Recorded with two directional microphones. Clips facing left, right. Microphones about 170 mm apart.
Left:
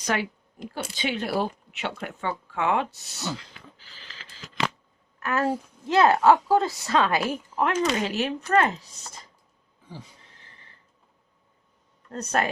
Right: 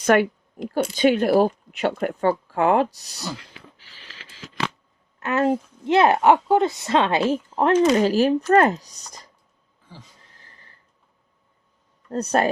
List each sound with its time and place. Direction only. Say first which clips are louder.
0.0 s speech: right 10 dB; 55° right (ahead or behind); by 3.2 s 40° right (ahead or behind)
5.2 s a woman's voice: right 5 dB; 20° right (ahead or behind); by 9.2 s 40° right (ahead or behind)
12.1 s speech: right 5 dB; 35° right (ahead or behind)